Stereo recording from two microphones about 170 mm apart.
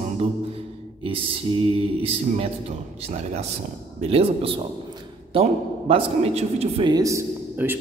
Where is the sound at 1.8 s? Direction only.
35° right (ahead or behind).